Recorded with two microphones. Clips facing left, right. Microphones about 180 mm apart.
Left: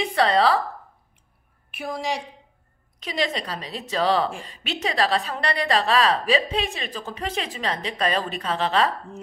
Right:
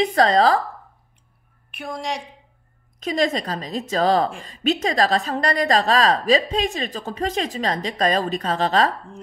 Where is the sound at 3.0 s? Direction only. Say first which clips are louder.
Right 5 dB; 45° right (ahead or behind).